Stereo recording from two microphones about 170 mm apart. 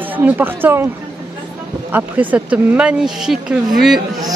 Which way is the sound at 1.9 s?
10° right (ahead or behind).